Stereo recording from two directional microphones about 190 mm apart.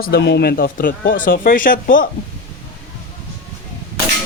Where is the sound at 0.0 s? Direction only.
60° left (ahead or behind).